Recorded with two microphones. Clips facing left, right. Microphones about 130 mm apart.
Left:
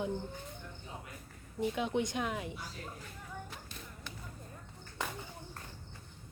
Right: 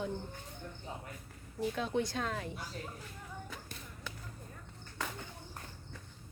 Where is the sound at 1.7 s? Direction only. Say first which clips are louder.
Even; 15° left (ahead or behind).